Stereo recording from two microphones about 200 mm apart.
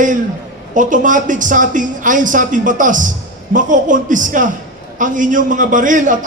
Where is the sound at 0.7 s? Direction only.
40° right (ahead or behind).